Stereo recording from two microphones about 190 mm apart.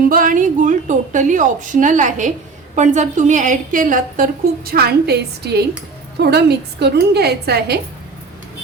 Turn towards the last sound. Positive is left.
turn(degrees=-55)  # may be behind; listen again after turning